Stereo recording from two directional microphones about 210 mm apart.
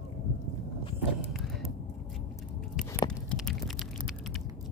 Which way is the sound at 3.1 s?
Centre (ahead or behind).